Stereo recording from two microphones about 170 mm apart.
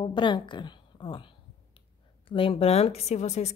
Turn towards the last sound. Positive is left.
turn(degrees=40)  # may be behind; listen again after turning